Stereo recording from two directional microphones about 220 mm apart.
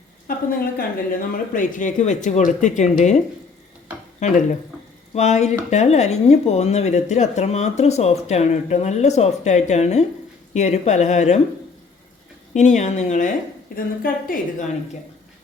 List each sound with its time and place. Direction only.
0.3 s a woman's voice: 40° left (ahead or behind)
4.2 s speech: 30° left (ahead or behind)
12.5 s speech: 30° left (ahead or behind)